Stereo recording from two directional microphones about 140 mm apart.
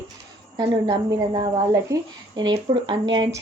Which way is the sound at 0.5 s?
30° right (ahead or behind).